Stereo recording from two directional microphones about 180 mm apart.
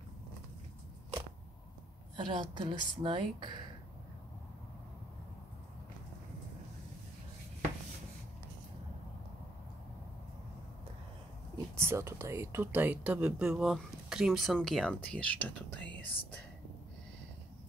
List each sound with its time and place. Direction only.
2.1 s a woman's voice: 25° right (ahead or behind)
11.5 s speech: 15° right (ahead or behind); by 16.2 s 10° left (ahead or behind)